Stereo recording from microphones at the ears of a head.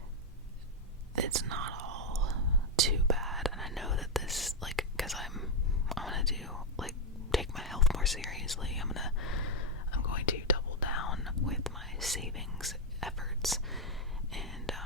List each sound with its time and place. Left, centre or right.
1.1 s whispering: right
3.4 s whispering: centre
8.9 s whispering: left
11.6 s whispering: centre